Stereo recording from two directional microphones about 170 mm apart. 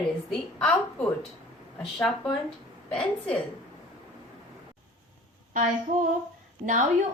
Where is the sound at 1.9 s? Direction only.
5° left (ahead or behind).